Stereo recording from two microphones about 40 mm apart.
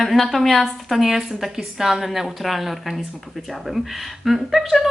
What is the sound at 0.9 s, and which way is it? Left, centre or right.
A woman's voice, centre.